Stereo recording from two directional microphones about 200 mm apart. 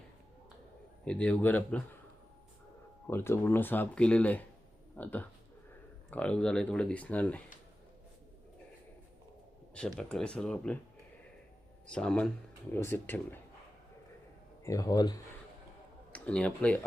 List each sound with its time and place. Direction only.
1.0 s speech: 5° left (ahead or behind)
3.1 s speech: 10° left (ahead or behind)
9.7 s speech: 5° left (ahead or behind)
11.9 s speech: 5° left (ahead or behind)
14.6 s speech: 15° left (ahead or behind)
16.1 s speech: 5° left (ahead or behind)